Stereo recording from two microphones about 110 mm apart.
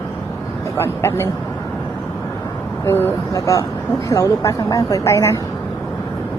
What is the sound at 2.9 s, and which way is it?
Speech, 20° left (ahead or behind).